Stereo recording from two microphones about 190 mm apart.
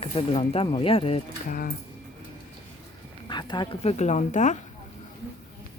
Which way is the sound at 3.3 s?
25° left (ahead or behind).